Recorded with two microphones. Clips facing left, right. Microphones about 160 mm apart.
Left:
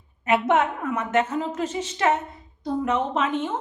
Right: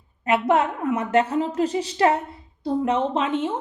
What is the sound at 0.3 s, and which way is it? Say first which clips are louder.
Speech: right 1 dB; centre (ahead or behind).